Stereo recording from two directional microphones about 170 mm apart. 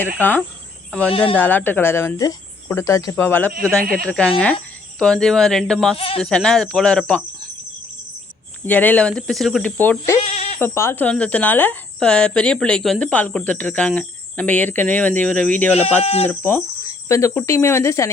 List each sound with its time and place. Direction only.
0.0 s speech: 10° left (ahead or behind)
1.1 s speech: 30° left (ahead or behind)
1.4 s speech: 10° left (ahead or behind)
6.0 s speech: 35° left (ahead or behind)
6.2 s speech: 5° left (ahead or behind)
8.6 s speech: 10° left (ahead or behind)
10.2 s a sound: 40° left (ahead or behind)
10.6 s speech: 15° left (ahead or behind)
16.0 s speech: 40° left (ahead or behind)
16.3 s speech: 10° left (ahead or behind)